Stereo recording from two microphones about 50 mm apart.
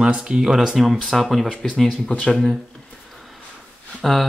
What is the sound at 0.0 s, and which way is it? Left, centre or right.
Speech, centre.